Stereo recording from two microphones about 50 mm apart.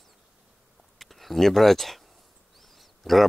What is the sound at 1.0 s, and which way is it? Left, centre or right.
Speech, centre.